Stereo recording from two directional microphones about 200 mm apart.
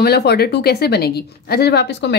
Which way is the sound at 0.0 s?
55° left (ahead or behind).